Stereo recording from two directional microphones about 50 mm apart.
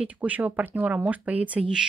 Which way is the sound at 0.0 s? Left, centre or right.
Right.